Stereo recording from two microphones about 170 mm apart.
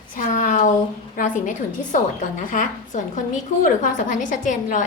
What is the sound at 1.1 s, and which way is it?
A woman's voice, 45° left (ahead or behind).